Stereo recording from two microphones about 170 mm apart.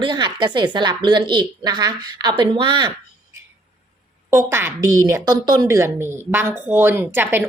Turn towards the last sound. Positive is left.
turn(degrees=-10)  # may be behind; listen again after turning